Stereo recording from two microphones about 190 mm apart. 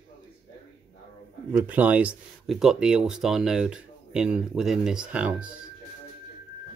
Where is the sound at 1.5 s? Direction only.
10° right (ahead or behind).